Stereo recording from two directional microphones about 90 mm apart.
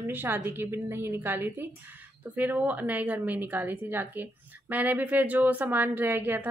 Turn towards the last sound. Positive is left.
turn(degrees=-20)  # may be behind; listen again after turning